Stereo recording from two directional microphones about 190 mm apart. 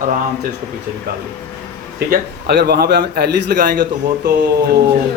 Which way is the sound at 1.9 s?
60° right (ahead or behind).